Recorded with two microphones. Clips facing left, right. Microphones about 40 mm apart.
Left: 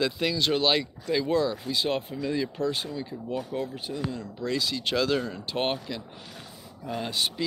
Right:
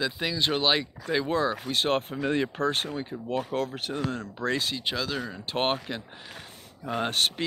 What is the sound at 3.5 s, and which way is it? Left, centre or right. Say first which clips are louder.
Speech: right 2 dB; right.